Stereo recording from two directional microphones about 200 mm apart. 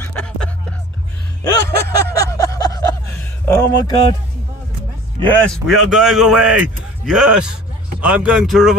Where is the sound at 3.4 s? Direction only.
15° left (ahead or behind).